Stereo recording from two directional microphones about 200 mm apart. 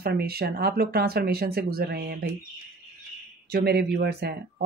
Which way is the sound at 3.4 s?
55° right (ahead or behind).